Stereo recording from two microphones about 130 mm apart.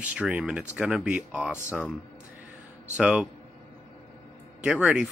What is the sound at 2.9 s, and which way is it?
Speech, 10° right (ahead or behind).